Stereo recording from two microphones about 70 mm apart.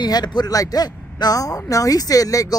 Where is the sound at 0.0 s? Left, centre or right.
Left.